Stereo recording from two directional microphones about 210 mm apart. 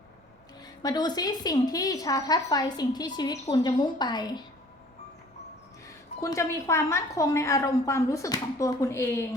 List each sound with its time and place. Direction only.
0.6 s a woman's voice: 20° left (ahead or behind)
6.1 s a woman's voice: 15° left (ahead or behind)